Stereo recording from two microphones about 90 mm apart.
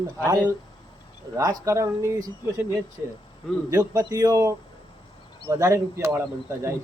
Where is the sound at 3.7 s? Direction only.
40° right (ahead or behind).